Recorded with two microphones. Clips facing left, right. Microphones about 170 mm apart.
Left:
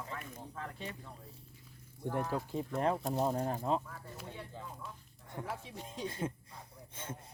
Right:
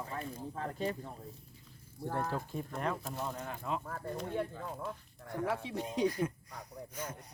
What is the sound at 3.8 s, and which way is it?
Speech, 55° right (ahead or behind).